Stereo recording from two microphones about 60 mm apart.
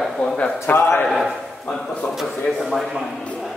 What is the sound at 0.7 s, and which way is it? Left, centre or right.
Speech, left.